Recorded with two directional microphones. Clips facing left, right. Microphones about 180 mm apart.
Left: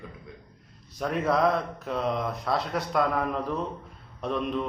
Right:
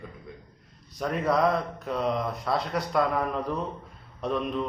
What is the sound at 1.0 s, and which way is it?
A man's voice, centre (ahead or behind).